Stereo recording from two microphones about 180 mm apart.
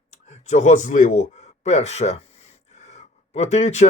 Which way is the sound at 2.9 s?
40° left (ahead or behind).